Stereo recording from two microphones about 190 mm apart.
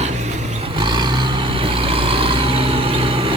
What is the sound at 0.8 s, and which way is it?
Vehicle, 25° right (ahead or behind).